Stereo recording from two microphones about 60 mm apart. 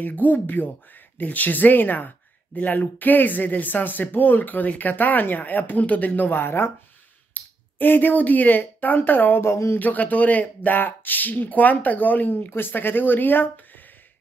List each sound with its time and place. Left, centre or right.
0.0 s speech: left
9.4 s speech: left
9.8 s speech: left